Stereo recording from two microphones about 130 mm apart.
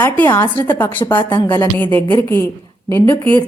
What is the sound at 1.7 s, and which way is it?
Speech, 15° left (ahead or behind).